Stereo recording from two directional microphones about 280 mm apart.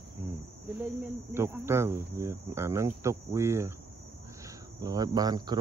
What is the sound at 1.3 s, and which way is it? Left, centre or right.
Speech, centre.